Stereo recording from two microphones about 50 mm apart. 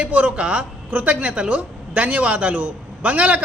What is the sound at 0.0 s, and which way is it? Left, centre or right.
Speech, right.